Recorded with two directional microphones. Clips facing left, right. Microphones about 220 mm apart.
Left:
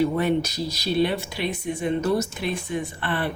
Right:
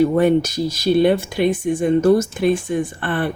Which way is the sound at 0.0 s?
50° right (ahead or behind).